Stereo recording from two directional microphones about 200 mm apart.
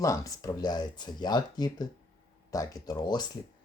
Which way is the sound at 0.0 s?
15° left (ahead or behind).